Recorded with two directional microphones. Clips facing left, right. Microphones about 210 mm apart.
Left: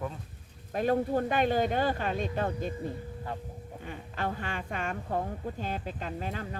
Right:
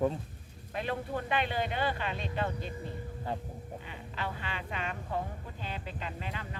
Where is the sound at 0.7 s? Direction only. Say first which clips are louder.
Left 8 dB; 45° left (ahead or behind).